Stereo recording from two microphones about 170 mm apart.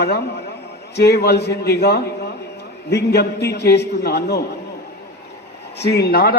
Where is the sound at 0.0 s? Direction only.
75° left (ahead or behind).